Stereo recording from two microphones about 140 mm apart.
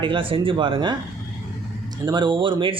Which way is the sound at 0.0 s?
35° right (ahead or behind).